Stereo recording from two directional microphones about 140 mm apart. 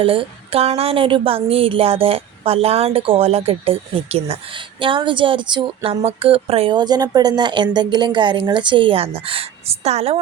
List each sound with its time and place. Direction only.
0.0 s a woman's voice: 40° right (ahead or behind)